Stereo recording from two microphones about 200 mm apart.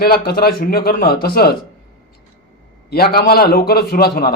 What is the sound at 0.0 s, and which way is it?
Speech, 50° left (ahead or behind).